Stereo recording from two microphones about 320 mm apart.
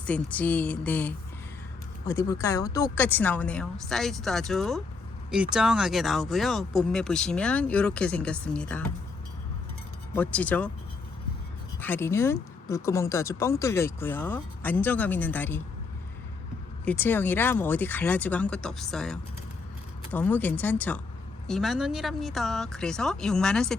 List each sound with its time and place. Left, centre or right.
0.0 s speech: centre
10.2 s speech: centre
11.8 s speech: centre
16.8 s speech: centre